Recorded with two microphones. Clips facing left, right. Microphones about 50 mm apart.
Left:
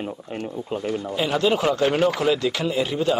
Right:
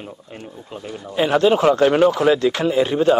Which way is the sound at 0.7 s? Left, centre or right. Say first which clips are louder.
Left 6 dB; left.